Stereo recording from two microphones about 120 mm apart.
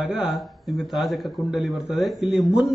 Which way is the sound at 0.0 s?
5° right (ahead or behind).